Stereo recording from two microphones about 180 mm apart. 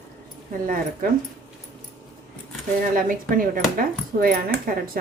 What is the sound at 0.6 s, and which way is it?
Speech, 50° right (ahead or behind).